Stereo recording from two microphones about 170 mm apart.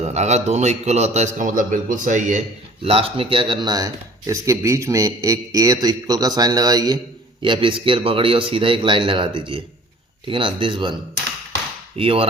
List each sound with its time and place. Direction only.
0.0 s a man's voice: 40° right (ahead or behind)
2.8 s a man's voice: 35° right (ahead or behind)
11.9 s a man's voice: 35° right (ahead or behind)